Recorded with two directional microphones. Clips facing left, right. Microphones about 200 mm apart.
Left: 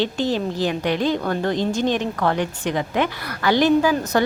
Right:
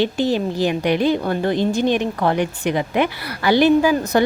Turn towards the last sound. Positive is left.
turn(degrees=-10)  # may be behind; listen again after turning